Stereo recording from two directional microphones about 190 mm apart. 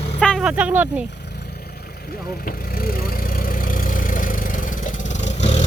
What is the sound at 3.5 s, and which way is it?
Vehicle, 45° left (ahead or behind).